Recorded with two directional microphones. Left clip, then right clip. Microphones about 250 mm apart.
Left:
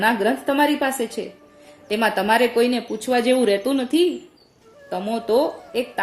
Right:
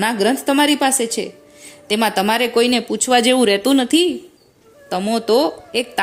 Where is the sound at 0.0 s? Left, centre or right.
Right.